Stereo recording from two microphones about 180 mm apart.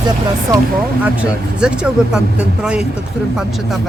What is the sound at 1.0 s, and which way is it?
Speech, 5° right (ahead or behind).